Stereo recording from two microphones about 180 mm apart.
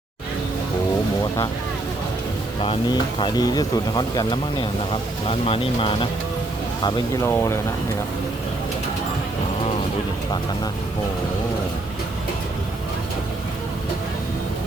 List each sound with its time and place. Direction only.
2.6 s speech: 25° left (ahead or behind)
7.3 s speech: 15° left (ahead or behind)